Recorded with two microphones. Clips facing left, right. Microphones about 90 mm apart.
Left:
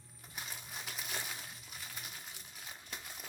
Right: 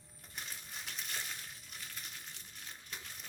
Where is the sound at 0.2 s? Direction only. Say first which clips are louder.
Left 1 dB; 5° left (ahead or behind).